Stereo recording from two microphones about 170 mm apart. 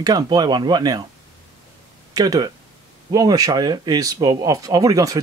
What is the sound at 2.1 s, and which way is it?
Speech, 20° right (ahead or behind).